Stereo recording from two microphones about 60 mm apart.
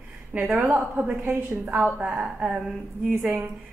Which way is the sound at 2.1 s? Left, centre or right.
Centre.